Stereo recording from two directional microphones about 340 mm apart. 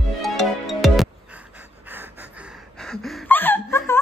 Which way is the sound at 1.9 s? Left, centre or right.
Centre.